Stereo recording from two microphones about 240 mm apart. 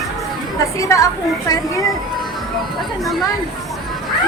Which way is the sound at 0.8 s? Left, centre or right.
Centre.